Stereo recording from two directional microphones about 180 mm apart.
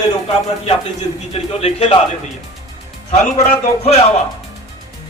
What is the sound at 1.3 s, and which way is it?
Speech, 35° left (ahead or behind).